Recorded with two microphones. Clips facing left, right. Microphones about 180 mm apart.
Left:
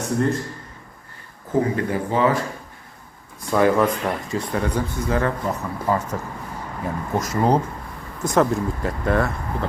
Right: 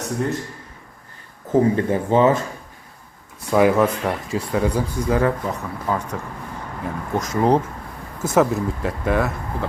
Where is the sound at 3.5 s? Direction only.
10° right (ahead or behind).